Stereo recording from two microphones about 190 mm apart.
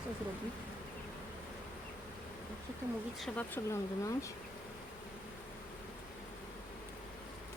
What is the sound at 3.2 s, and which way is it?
Speech, 10° left (ahead or behind).